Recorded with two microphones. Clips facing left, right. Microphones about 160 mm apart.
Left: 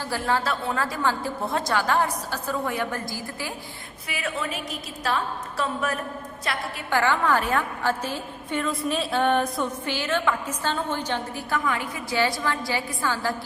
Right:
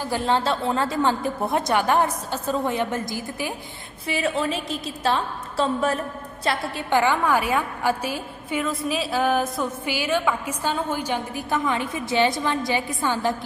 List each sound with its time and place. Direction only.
0.0 s a woman's voice: 20° right (ahead or behind)